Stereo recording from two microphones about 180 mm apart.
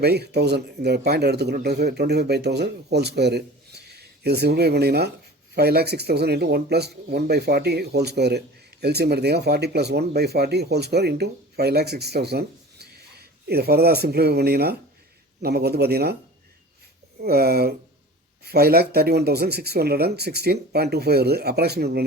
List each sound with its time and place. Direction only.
0.0 s speech: 65° right (ahead or behind)
17.2 s speech: 60° right (ahead or behind)